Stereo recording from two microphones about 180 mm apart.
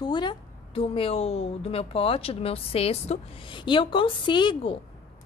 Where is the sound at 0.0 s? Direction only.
25° left (ahead or behind).